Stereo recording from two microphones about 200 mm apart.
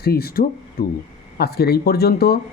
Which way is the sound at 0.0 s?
50° left (ahead or behind).